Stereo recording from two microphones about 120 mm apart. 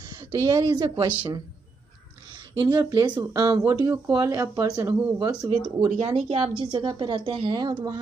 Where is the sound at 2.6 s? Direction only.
35° right (ahead or behind).